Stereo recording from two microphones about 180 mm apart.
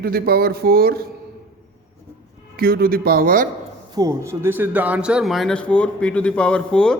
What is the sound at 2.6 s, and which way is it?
Music, 55° right (ahead or behind).